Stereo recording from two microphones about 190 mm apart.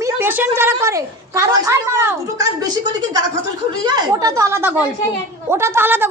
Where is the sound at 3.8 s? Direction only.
20° right (ahead or behind).